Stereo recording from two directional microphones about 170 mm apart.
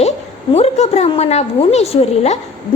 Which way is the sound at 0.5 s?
40° left (ahead or behind).